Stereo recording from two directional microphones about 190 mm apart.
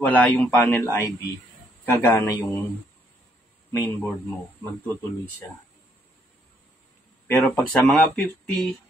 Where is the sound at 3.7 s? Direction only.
15° left (ahead or behind).